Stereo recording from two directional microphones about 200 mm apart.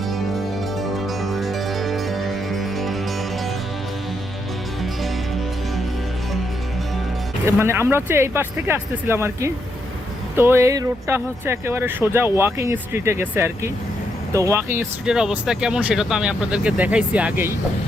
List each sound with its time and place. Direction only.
0.1 s music: centre (ahead or behind)
7.4 s speech: 15° right (ahead or behind)